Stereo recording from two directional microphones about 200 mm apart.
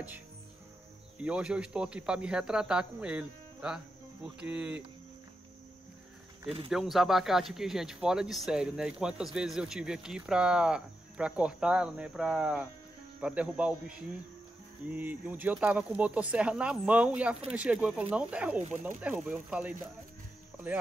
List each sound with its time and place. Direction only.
1.2 s speech: 5° right (ahead or behind)
6.7 s speech: centre (ahead or behind)
18.6 s speech: 35° right (ahead or behind)
18.9 s speech: 5° right (ahead or behind)